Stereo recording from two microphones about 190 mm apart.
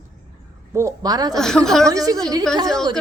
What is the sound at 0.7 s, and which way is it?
Speech, 20° right (ahead or behind).